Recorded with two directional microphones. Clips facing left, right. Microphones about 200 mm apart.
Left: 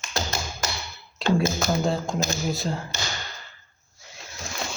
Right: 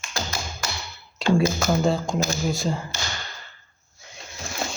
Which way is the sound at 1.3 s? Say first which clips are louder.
Right 2 dB; centre (ahead or behind).